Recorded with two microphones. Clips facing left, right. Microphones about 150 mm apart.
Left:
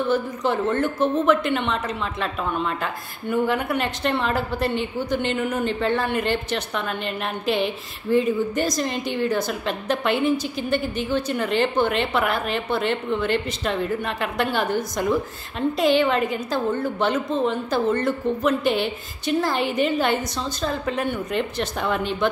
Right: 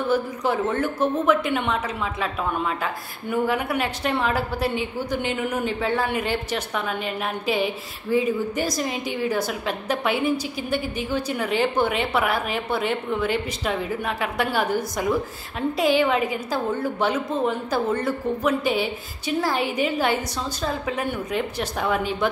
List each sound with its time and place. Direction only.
0.1 s a woman's voice: 5° right (ahead or behind)